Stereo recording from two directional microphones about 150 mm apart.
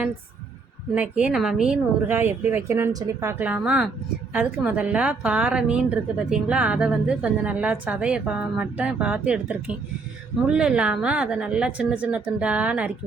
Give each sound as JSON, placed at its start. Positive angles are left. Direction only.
{"t": 0.9, "sound": "a woman's voice", "side_deg": -10}